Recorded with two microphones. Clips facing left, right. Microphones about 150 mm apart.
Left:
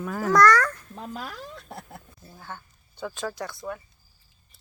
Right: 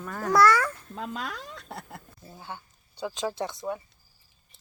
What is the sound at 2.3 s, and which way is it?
Speech, 15° right (ahead or behind).